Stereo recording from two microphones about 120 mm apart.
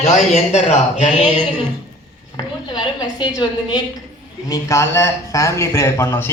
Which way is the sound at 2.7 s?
35° left (ahead or behind).